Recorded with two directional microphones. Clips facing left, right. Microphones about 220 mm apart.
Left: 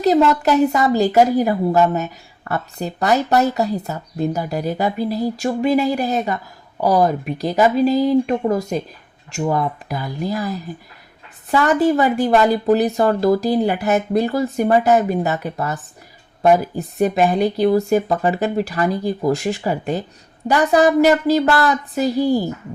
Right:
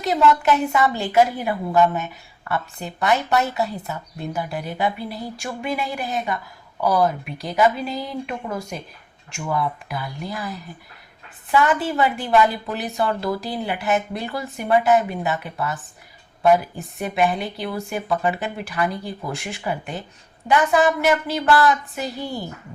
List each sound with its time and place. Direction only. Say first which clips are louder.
0.0 s a woman's voice: left 4 dB; 35° left (ahead or behind)